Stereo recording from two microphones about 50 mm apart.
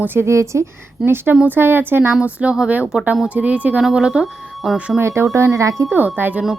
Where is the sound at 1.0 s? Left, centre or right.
Right.